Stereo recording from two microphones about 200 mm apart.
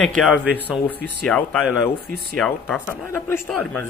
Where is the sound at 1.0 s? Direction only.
5° left (ahead or behind).